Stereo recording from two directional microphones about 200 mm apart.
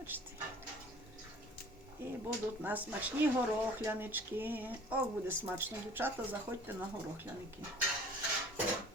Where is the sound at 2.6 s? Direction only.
10° right (ahead or behind).